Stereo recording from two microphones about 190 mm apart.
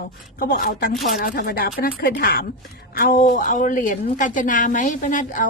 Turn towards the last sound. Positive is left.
turn(degrees=40)  # may be behind; listen again after turning